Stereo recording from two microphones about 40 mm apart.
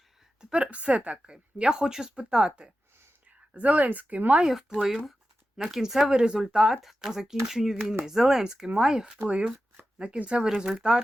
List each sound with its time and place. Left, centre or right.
0.5 s speech: right
1.3 s speech: right
3.2 s a woman's voice: right
4.4 s speech: centre
6.1 s speech: right
6.8 s speech: centre
9.2 s speech: right
9.7 s shuffling cards: right
10.2 s speech: right